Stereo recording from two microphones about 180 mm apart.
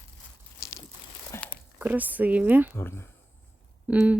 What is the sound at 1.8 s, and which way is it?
Speech, 10° right (ahead or behind).